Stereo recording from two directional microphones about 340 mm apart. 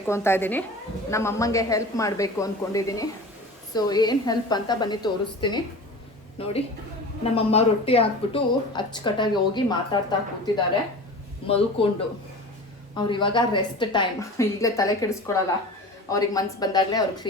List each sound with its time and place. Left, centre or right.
0.1 s speech: centre